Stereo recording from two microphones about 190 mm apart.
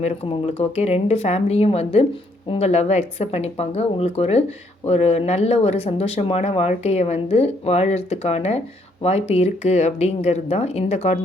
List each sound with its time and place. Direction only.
0.0 s speech: 30° left (ahead or behind)